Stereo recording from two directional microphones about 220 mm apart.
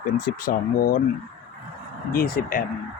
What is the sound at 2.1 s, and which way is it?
Speech, 40° left (ahead or behind).